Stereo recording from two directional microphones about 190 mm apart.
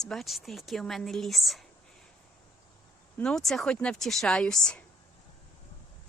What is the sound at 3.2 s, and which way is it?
Speech, 5° left (ahead or behind).